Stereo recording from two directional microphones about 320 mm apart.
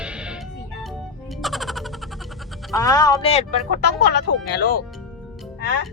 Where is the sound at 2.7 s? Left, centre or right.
Centre.